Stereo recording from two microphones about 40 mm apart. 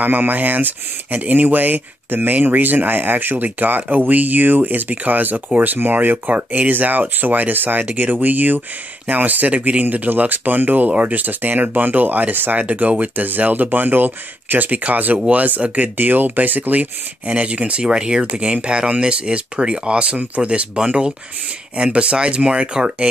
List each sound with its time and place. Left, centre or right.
0.0 s speech: right
15.1 s speech: right
15.4 s speech: right
17.3 s speech: right
17.9 s speech: centre
18.3 s speech: right